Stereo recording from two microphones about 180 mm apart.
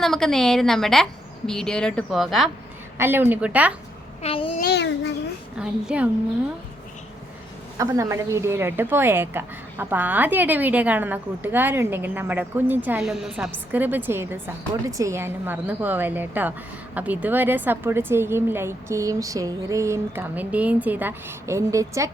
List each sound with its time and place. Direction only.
0.0 s a woman's voice: centre (ahead or behind)
3.0 s a woman's voice: 10° right (ahead or behind)
4.2 s babbling: 30° left (ahead or behind)
4.6 s a sound: 70° left (ahead or behind)
5.5 s a woman's voice: 5° right (ahead or behind)
7.8 s a woman's voice: 15° right (ahead or behind)